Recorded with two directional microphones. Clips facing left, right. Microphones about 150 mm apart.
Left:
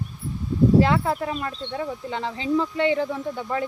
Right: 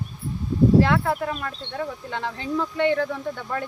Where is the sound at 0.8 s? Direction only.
25° left (ahead or behind).